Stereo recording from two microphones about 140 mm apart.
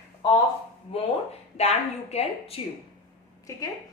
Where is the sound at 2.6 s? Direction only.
40° left (ahead or behind).